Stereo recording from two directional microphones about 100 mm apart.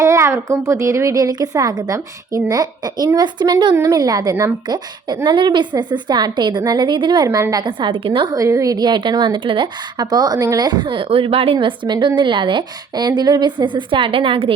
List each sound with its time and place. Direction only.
0.0 s a woman's voice: 30° right (ahead or behind)
4.6 s a woman's voice: 45° right (ahead or behind)
7.3 s a woman's voice: 35° right (ahead or behind)
7.6 s a woman's voice: 55° right (ahead or behind)
8.4 s a woman's voice: 35° right (ahead or behind); by 11.5 s 70° right (ahead or behind)
11.5 s a woman's voice: 50° right (ahead or behind); by 14.5 s 65° right (ahead or behind)